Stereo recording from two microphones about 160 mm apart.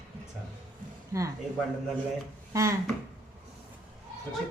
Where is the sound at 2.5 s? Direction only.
20° right (ahead or behind).